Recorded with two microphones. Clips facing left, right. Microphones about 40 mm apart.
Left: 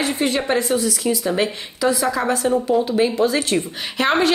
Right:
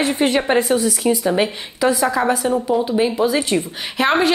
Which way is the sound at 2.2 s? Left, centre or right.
Centre.